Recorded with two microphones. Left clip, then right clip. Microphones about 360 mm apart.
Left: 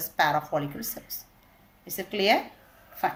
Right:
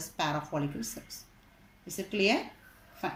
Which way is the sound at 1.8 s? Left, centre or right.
Left.